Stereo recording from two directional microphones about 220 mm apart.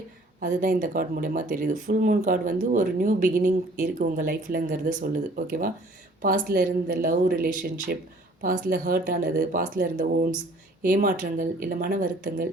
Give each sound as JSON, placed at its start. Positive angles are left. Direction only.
{"t": 0.3, "sound": "speech", "side_deg": -35}